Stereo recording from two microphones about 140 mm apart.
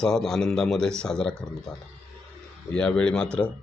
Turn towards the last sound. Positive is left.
turn(degrees=5)  # may be behind; listen again after turning